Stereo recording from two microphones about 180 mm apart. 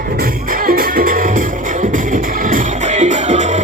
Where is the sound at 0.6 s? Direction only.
55° right (ahead or behind).